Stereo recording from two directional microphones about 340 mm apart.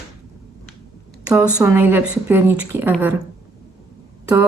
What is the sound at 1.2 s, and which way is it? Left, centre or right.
Speech, centre.